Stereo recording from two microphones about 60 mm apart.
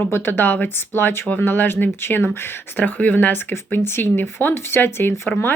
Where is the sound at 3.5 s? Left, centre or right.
Left.